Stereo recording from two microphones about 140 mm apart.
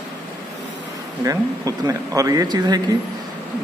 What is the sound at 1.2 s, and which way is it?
Speech, 25° right (ahead or behind).